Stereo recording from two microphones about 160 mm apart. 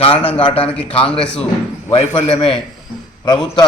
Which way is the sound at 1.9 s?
30° left (ahead or behind).